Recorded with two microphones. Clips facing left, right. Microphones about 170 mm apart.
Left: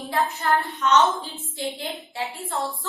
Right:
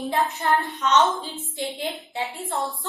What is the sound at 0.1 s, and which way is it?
A woman's voice, 20° right (ahead or behind).